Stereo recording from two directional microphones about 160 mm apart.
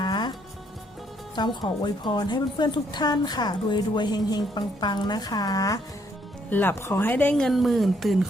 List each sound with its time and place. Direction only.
0.0 s music: 25° left (ahead or behind)
1.4 s a woman's voice: 30° left (ahead or behind); by 8.3 s centre (ahead or behind)